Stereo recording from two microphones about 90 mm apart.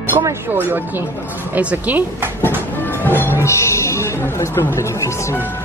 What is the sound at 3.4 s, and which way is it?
Speech, 35° left (ahead or behind).